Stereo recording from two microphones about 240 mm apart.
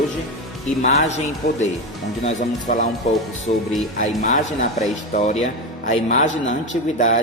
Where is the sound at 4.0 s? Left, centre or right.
Left.